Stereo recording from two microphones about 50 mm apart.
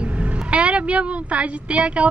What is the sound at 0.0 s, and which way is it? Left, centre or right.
A woman's voice, right.